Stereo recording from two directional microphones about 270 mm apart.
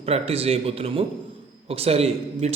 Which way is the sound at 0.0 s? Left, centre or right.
Right.